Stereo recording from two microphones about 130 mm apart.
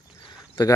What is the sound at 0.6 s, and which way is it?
Speech, 40° left (ahead or behind).